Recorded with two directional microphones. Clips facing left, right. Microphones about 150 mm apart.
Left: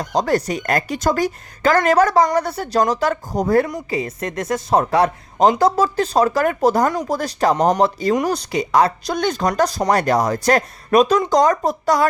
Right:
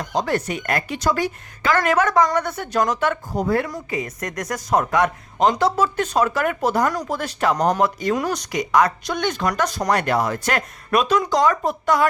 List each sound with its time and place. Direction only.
0.0 s speech: 40° left (ahead or behind)